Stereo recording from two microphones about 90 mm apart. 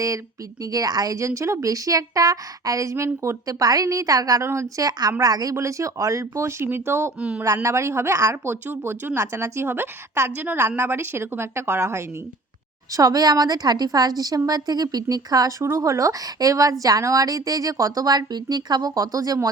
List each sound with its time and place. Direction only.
0.6 s a woman's voice: 40° right (ahead or behind)
7.2 s a man's voice: 10° right (ahead or behind)
7.4 s a woman's voice: 35° right (ahead or behind)
12.9 s a woman's voice: 40° right (ahead or behind)